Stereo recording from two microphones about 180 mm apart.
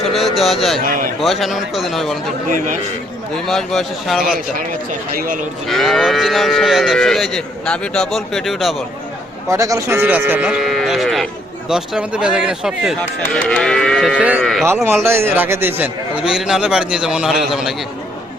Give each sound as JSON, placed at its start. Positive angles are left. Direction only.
{"t": 0.1, "sound": "speech", "side_deg": 0}
{"t": 0.8, "sound": "speech", "side_deg": -50}
{"t": 1.2, "sound": "speech", "side_deg": 0}
{"t": 3.3, "sound": "speech", "side_deg": 0}
{"t": 5.1, "sound": "speech", "side_deg": -50}
{"t": 5.6, "sound": "speech", "side_deg": 0}
{"t": 9.5, "sound": "speech", "side_deg": -20}
{"t": 14.2, "sound": "speech", "side_deg": -5}
{"t": 15.0, "sound": "speech", "side_deg": -15}